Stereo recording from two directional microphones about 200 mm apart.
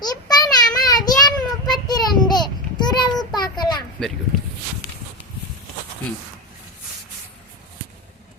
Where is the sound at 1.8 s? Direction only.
20° left (ahead or behind).